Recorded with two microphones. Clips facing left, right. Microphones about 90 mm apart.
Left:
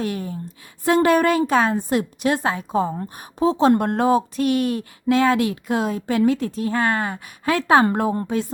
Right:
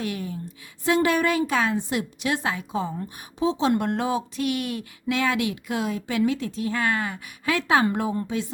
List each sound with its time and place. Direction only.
0.0 s a woman's voice: 40° left (ahead or behind)